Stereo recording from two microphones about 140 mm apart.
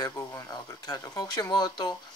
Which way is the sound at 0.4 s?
25° left (ahead or behind).